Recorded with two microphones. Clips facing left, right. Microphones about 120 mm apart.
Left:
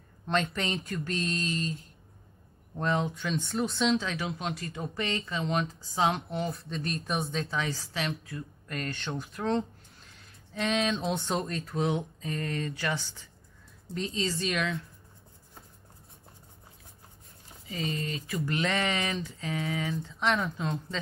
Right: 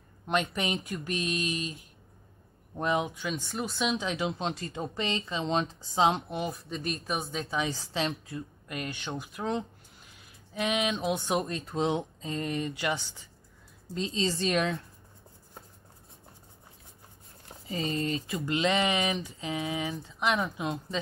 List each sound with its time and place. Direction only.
0.3 s a woman's voice: 15° right (ahead or behind)
7.4 s a woman's voice: 20° right (ahead or behind); by 14.8 s 35° right (ahead or behind)
17.6 s speech: 35° right (ahead or behind); by 21.0 s 15° right (ahead or behind)